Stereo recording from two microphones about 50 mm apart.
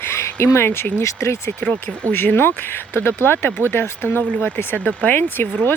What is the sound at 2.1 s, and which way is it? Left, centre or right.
Speech, left.